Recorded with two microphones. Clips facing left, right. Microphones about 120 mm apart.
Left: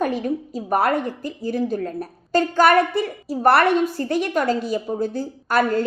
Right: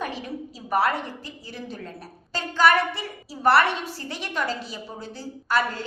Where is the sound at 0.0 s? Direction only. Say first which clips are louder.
Left 9 dB; 50° left (ahead or behind).